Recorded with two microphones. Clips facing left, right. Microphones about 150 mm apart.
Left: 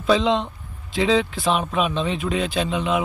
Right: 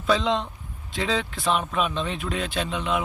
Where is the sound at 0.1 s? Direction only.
Centre (ahead or behind).